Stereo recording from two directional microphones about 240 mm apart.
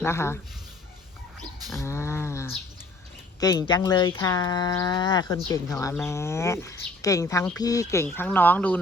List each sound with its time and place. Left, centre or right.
0.0 s speech: centre
1.8 s speech: centre